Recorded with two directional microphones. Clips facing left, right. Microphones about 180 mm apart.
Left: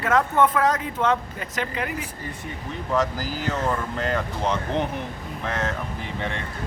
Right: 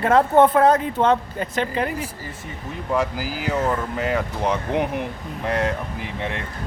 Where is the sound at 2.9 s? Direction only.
10° right (ahead or behind).